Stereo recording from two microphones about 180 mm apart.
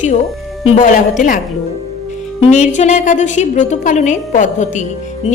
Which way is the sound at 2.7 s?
40° left (ahead or behind).